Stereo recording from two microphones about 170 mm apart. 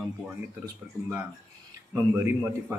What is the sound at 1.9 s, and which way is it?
Speech, 15° right (ahead or behind).